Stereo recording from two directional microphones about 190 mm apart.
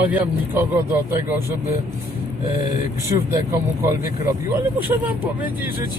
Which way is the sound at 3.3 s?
20° right (ahead or behind).